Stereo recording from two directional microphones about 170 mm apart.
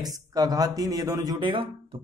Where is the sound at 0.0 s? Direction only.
20° right (ahead or behind).